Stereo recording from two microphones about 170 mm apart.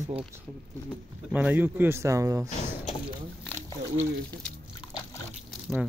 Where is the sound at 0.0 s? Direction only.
35° right (ahead or behind).